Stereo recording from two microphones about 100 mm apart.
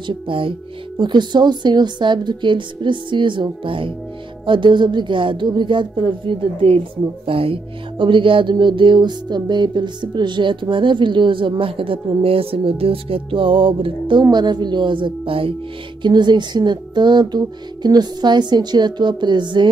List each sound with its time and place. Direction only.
0.0 s a woman's voice: 60° right (ahead or behind)
14.2 s speech: 45° right (ahead or behind); by 15.5 s 65° right (ahead or behind)
16.0 s speech: 50° right (ahead or behind)